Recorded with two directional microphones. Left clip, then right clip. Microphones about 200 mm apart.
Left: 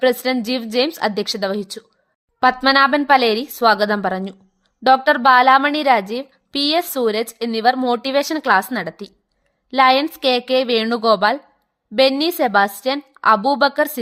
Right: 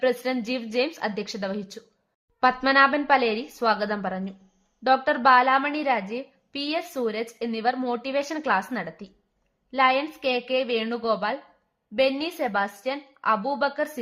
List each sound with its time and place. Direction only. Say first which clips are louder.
0.0 s a woman's voice: left 7 dB; 40° left (ahead or behind)